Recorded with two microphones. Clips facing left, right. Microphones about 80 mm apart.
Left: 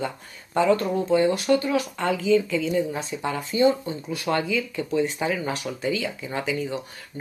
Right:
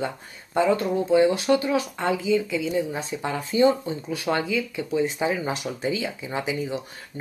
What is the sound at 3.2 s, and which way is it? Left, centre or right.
Speech, right.